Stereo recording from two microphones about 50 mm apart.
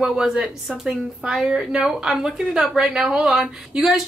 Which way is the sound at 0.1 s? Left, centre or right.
Centre.